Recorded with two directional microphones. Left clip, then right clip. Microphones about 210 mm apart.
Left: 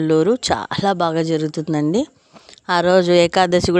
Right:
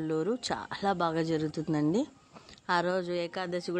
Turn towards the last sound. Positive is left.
turn(degrees=50)  # may be behind; listen again after turning